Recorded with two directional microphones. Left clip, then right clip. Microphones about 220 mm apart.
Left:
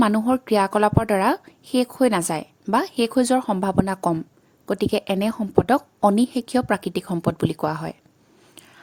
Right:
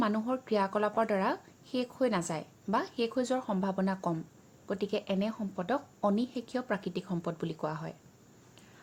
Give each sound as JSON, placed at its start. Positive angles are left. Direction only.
{"t": 0.0, "sound": "a woman's voice", "side_deg": 50}